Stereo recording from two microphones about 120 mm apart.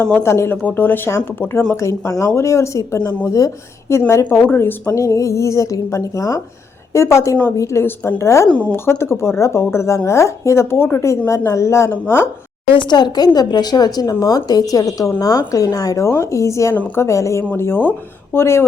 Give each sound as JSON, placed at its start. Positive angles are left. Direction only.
{"t": 0.0, "sound": "speech", "side_deg": 20}
{"t": 12.9, "sound": "a woman's voice", "side_deg": 35}